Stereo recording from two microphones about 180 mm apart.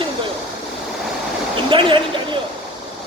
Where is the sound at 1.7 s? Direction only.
25° right (ahead or behind).